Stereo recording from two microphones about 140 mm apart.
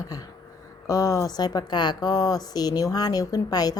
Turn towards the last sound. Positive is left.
turn(degrees=25)  # may be behind; listen again after turning